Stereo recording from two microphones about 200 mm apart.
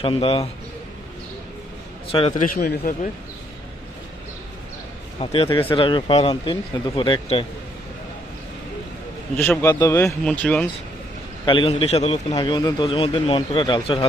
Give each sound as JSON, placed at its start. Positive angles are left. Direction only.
{"t": 0.0, "sound": "a man's voice", "side_deg": 30}
{"t": 2.1, "sound": "speech", "side_deg": 30}
{"t": 2.6, "sound": "speech", "side_deg": 45}
{"t": 5.2, "sound": "a man's voice", "side_deg": 25}
{"t": 9.4, "sound": "speech", "side_deg": 10}
{"t": 11.4, "sound": "a man's voice", "side_deg": 25}
{"t": 12.4, "sound": "a man's voice", "side_deg": 20}